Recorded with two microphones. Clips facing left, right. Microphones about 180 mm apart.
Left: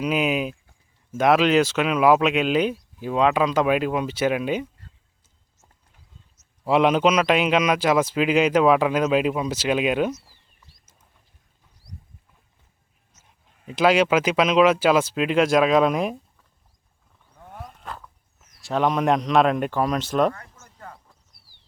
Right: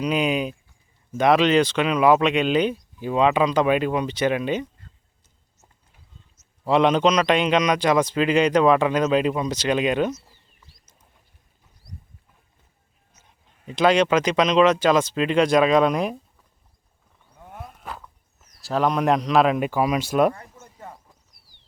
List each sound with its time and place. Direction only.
0.0 s speech: 5° left (ahead or behind)
6.7 s speech: 5° left (ahead or behind)
13.2 s speech: 5° left (ahead or behind)
17.3 s a sound: 5° right (ahead or behind)
18.6 s speech: centre (ahead or behind)
20.3 s a sound: 20° right (ahead or behind)